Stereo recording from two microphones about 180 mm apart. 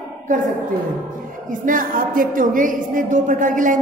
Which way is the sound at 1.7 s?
50° right (ahead or behind).